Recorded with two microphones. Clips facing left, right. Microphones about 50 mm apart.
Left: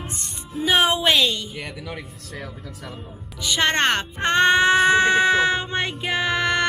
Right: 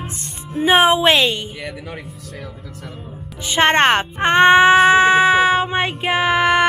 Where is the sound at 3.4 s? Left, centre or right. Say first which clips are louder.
Right 6 dB; right.